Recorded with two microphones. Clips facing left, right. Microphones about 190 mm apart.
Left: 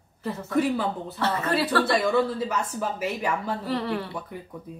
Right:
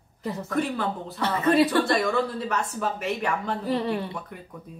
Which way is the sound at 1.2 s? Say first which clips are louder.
Right 5 dB; 20° right (ahead or behind).